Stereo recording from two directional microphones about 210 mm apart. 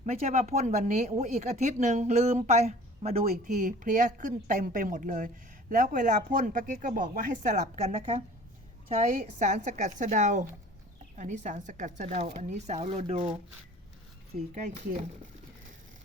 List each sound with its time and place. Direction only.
0.0 s speech: 30° right (ahead or behind)
14.5 s speech: 35° right (ahead or behind)